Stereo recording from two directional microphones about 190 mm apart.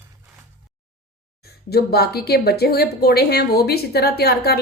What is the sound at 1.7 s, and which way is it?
A woman's voice, 55° left (ahead or behind).